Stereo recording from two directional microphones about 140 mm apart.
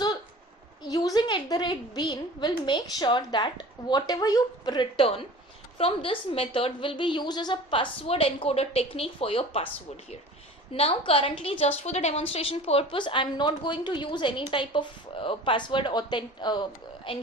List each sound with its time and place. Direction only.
0.9 s a woman's voice: 25° left (ahead or behind); by 9.6 s 45° left (ahead or behind)
10.8 s a woman's voice: 40° left (ahead or behind)